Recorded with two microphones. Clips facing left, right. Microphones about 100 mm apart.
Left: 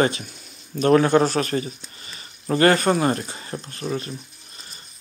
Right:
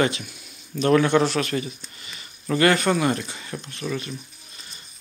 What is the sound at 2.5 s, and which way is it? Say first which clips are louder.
Speech: left 2 dB; 35° left (ahead or behind).